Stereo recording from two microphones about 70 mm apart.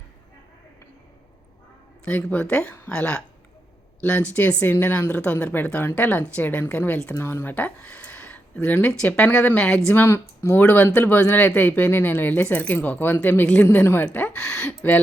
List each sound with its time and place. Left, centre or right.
2.0 s speech: centre
5.1 s speech: centre
7.1 s speech: left
7.5 s a sound: left
8.5 s speech: left
9.6 s speech: centre
9.9 s speech: left
14.3 s speech: centre